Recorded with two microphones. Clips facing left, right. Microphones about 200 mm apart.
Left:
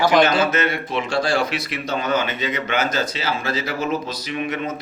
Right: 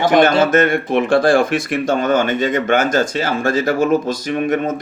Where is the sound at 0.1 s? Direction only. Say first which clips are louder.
Right 5 dB; 50° right (ahead or behind).